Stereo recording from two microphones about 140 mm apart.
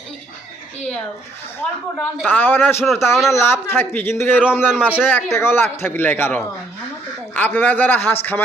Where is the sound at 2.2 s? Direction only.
15° left (ahead or behind).